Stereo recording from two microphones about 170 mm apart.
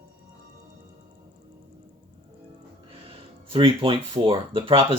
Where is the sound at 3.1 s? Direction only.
30° right (ahead or behind).